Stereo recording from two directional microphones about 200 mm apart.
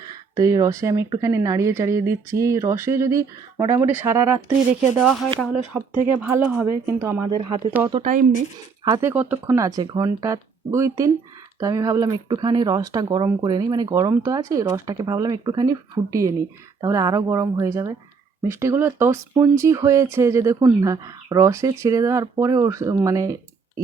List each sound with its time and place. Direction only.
0.1 s speech: 20° right (ahead or behind)
5.7 s speech: 10° right (ahead or behind); by 7.7 s 25° right (ahead or behind)
8.0 s speech: 40° right (ahead or behind)
8.8 s speech: 15° right (ahead or behind)